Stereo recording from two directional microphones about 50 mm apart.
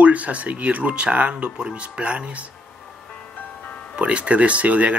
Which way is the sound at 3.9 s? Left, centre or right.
Right.